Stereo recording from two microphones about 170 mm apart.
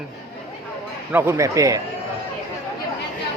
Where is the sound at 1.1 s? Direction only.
15° right (ahead or behind).